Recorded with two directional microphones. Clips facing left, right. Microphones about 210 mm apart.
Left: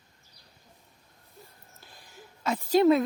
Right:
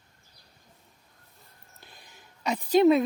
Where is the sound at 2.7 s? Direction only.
20° right (ahead or behind).